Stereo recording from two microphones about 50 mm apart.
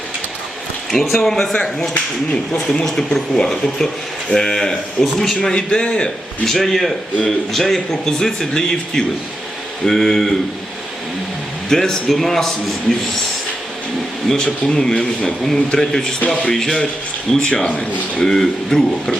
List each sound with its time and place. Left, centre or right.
1.1 s speech: centre
5.0 s speech: centre
5.4 s speech: centre
6.4 s speech: centre
11.7 s speech: centre
14.3 s speech: centre
17.5 s speech: left
18.2 s speech: centre